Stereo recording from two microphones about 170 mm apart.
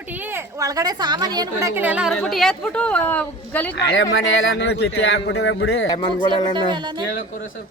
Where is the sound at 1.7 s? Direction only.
10° right (ahead or behind).